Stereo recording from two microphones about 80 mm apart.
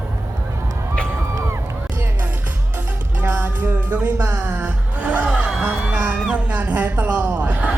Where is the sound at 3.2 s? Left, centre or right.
Right.